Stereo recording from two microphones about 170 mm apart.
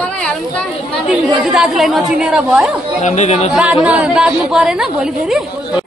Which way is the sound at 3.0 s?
45° left (ahead or behind).